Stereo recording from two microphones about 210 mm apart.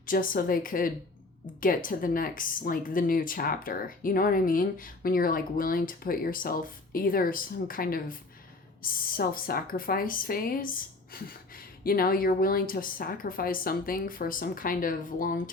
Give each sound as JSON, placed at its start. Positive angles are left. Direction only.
{"t": 0.0, "sound": "a woman's voice", "side_deg": 40}